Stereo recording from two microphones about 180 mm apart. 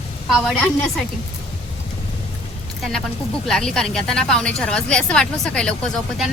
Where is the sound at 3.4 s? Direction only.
5° left (ahead or behind).